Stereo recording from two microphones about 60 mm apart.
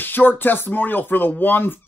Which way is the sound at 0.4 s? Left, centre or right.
Left.